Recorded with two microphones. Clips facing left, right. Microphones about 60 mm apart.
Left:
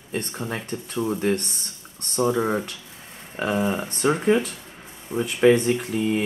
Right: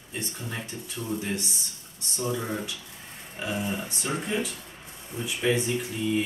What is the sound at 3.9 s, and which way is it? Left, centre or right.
Speech, left.